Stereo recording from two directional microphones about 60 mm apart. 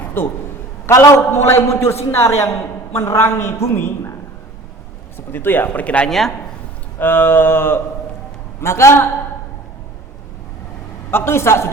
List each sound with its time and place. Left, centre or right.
0.2 s a sound: left
0.9 s a man's voice: left
5.3 s speech: left
6.1 s speech: centre
7.0 s a sound: left
8.6 s a man's voice: left
11.1 s a man's voice: left